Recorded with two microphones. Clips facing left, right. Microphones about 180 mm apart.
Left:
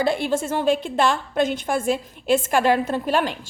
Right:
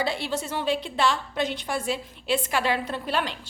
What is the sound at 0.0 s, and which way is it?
A woman's voice, 50° left (ahead or behind).